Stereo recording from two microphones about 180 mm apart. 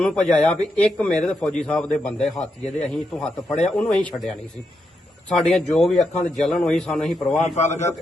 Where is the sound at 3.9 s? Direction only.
5° left (ahead or behind).